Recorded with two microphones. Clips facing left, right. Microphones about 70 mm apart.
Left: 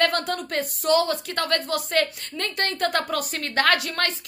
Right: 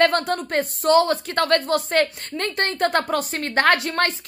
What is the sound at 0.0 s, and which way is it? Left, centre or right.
A woman's voice, right.